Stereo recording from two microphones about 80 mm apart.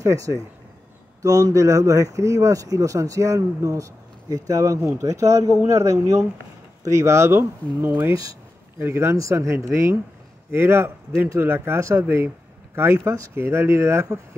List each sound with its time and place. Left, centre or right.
0.0 s speech: right